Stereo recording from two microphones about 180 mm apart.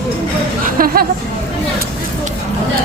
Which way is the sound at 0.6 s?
50° right (ahead or behind).